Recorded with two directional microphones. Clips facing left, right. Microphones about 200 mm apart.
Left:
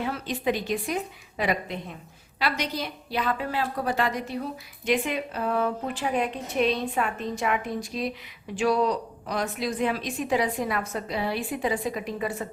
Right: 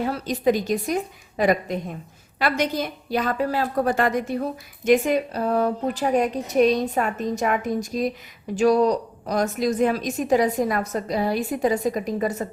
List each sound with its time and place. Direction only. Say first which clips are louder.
0.0 s a woman's voice: right 6 dB; 40° right (ahead or behind)